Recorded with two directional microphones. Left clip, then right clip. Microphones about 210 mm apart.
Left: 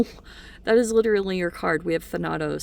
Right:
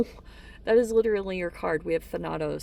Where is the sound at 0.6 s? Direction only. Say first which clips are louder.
Left 2 dB; 40° left (ahead or behind).